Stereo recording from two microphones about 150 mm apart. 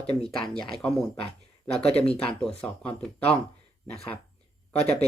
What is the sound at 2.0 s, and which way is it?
Speech, 10° left (ahead or behind).